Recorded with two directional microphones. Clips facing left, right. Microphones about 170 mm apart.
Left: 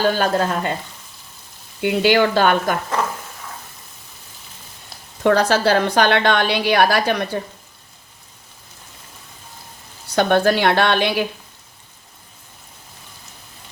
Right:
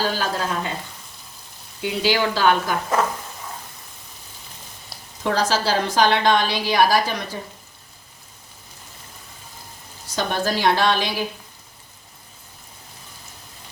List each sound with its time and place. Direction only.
0.0 s a woman's voice: 55° left (ahead or behind)
1.8 s a woman's voice: 60° left (ahead or behind)
5.2 s a woman's voice: 60° left (ahead or behind)
10.2 s a woman's voice: 65° left (ahead or behind)